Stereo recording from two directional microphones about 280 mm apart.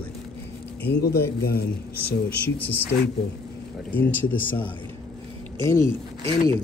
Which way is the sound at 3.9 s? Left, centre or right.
Centre.